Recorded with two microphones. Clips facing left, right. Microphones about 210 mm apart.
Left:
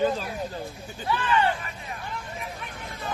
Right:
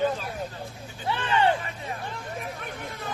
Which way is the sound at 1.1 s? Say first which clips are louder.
Even; 25° right (ahead or behind).